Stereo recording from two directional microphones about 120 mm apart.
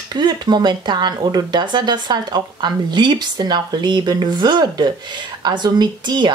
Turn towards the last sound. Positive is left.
turn(degrees=-40)  # may be behind; listen again after turning